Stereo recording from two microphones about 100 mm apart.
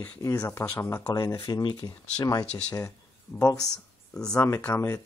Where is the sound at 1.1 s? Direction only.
30° left (ahead or behind).